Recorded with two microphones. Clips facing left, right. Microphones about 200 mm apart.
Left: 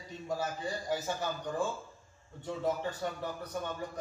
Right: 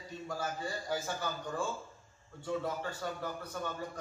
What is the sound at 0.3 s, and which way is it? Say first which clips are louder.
Speech: left 3 dB; 20° left (ahead or behind).